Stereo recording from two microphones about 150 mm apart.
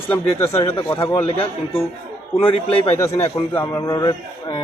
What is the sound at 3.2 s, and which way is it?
A man's voice, 20° left (ahead or behind).